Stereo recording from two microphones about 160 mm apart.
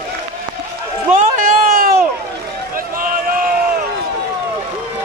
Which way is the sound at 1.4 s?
60° right (ahead or behind).